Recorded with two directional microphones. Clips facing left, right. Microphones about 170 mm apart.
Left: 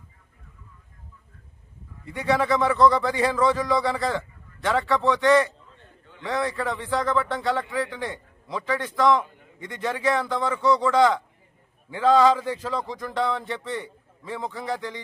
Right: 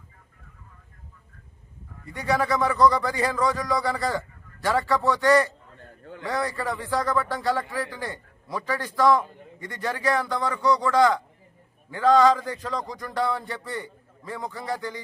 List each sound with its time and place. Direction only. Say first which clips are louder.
2.2 s a man's voice: left 2 dB; centre (ahead or behind)